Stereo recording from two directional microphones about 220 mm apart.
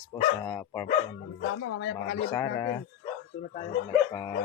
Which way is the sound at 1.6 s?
65° left (ahead or behind).